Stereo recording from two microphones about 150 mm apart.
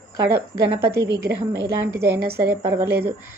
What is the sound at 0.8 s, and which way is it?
A woman's voice, 20° right (ahead or behind).